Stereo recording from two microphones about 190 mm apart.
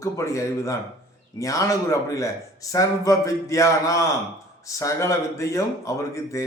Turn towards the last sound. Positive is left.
turn(degrees=15)  # may be behind; listen again after turning